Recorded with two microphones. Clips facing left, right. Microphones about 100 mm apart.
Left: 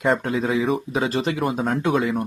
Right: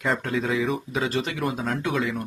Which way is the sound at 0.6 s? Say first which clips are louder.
Left 4 dB; 35° left (ahead or behind).